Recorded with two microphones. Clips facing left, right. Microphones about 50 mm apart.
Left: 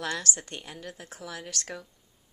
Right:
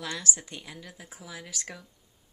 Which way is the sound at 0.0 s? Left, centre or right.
Left.